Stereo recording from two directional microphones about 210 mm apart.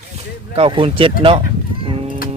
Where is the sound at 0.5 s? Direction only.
25° right (ahead or behind).